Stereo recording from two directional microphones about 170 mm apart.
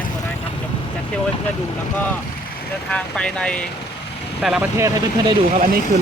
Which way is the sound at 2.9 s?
5° left (ahead or behind).